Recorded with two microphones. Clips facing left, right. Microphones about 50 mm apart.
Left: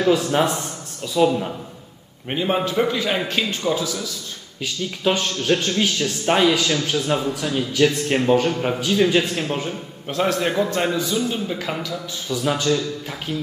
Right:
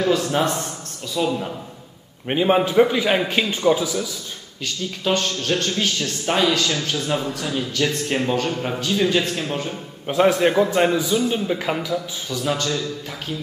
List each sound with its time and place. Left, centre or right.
1.1 s a man's voice: centre
2.2 s a man's voice: centre
4.6 s a man's voice: centre
10.0 s a man's voice: centre
12.4 s a man's voice: centre